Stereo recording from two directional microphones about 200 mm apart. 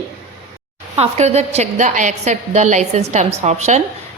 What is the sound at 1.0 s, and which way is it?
A woman's voice, 35° right (ahead or behind).